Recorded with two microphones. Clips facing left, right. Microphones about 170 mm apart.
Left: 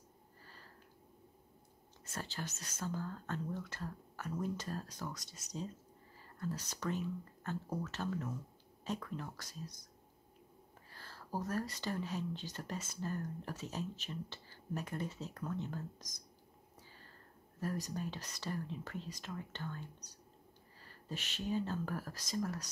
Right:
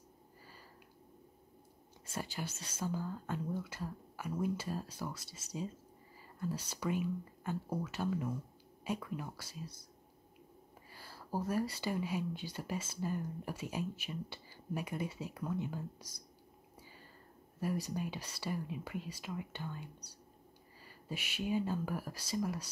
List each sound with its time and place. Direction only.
2.0 s speech: 10° right (ahead or behind)
10.9 s speech: 10° right (ahead or behind)
17.6 s speech: 10° right (ahead or behind)